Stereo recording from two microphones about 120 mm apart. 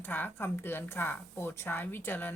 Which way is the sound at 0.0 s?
15° left (ahead or behind).